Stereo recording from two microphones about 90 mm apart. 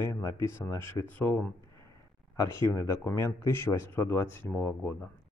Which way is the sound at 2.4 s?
35° left (ahead or behind).